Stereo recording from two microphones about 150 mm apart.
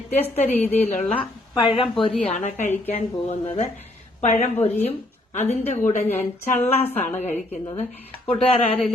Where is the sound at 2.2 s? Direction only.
50° left (ahead or behind).